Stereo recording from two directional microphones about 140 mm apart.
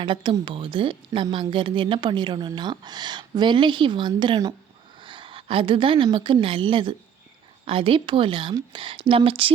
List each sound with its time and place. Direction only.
0.0 s a woman's voice: 35° right (ahead or behind)